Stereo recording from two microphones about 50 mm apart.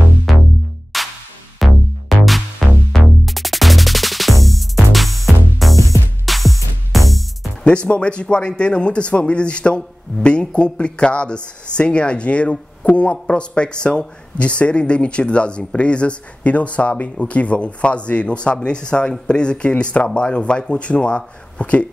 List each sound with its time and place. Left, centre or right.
0.3 s music: centre
7.6 s speech: left